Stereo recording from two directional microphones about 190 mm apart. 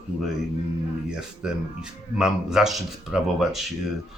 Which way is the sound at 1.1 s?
5° right (ahead or behind).